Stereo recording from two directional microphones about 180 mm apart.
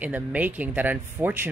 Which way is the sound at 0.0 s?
10° right (ahead or behind).